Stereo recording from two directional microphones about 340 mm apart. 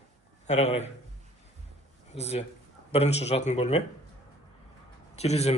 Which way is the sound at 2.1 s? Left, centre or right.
Centre.